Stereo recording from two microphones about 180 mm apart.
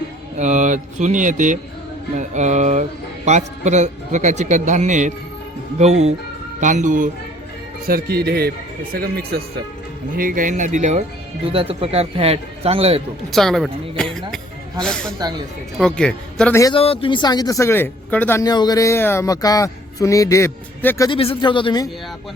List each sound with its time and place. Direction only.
0.3 s a man's voice: 40° right (ahead or behind)
7.9 s a man's voice: 55° right (ahead or behind); by 13.0 s 35° right (ahead or behind)
13.3 s speech: centre (ahead or behind)
15.2 s speech: 25° right (ahead or behind)
15.8 s speech: 5° left (ahead or behind)
16.7 s speech: 30° left (ahead or behind); by 21.1 s 15° left (ahead or behind)
21.1 s speech: 30° left (ahead or behind)